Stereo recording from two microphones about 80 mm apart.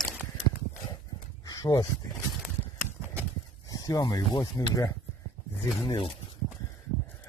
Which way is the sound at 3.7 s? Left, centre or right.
Left.